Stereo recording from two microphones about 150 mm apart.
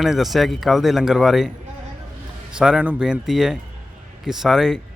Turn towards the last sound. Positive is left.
turn(degrees=-5)  # may be behind; listen again after turning